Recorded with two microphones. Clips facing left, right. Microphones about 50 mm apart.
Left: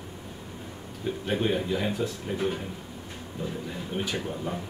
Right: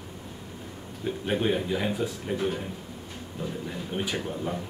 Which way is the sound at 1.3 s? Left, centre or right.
Centre.